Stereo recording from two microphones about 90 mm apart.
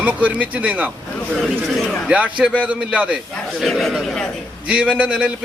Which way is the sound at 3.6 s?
Centre (ahead or behind).